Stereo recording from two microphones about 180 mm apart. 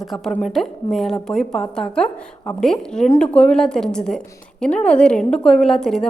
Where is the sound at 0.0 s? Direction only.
Centre (ahead or behind).